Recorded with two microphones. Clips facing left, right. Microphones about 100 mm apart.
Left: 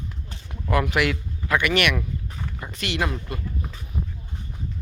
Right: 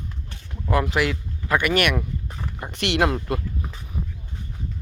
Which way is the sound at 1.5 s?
45° right (ahead or behind).